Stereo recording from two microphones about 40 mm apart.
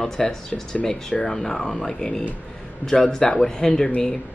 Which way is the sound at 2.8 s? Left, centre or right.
Centre.